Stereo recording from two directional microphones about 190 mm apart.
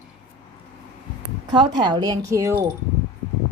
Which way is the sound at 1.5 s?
25° right (ahead or behind).